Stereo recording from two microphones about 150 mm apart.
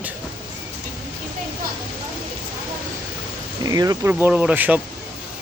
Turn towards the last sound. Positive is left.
turn(degrees=-10)  # may be behind; listen again after turning